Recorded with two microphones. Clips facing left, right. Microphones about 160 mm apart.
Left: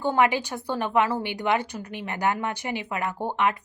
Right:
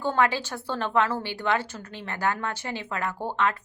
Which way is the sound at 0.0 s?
15° left (ahead or behind).